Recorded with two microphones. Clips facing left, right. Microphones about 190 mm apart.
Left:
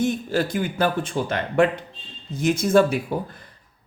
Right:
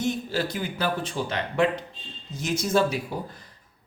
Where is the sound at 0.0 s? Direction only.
50° left (ahead or behind).